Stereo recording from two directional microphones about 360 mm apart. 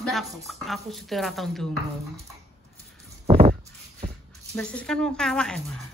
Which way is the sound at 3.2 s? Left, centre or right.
Centre.